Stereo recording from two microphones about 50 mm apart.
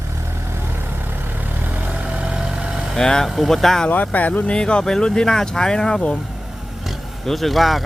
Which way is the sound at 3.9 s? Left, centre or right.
Left.